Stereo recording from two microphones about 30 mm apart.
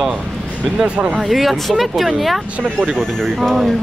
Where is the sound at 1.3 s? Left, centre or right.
Centre.